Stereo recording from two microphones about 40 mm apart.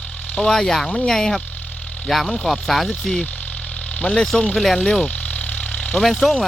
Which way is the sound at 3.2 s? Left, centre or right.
Left.